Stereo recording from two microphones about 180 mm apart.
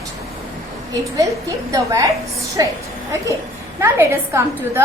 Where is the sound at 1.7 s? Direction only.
20° right (ahead or behind).